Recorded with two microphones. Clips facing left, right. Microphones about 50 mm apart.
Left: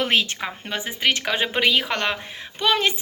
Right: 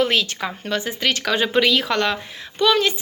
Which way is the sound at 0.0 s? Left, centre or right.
Left.